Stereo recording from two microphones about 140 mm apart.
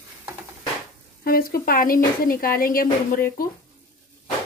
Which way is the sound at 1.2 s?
90° left.